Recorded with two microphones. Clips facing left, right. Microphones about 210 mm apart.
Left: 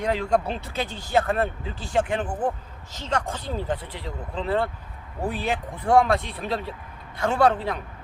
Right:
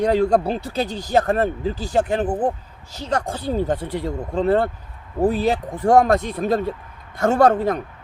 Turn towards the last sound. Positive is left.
turn(degrees=-45)  # may be behind; listen again after turning